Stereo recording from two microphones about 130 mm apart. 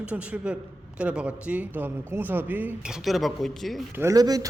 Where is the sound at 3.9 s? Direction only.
25° right (ahead or behind).